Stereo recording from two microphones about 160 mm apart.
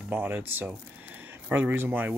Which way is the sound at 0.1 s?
10° right (ahead or behind).